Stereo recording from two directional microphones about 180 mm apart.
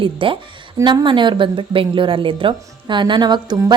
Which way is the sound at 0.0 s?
30° right (ahead or behind).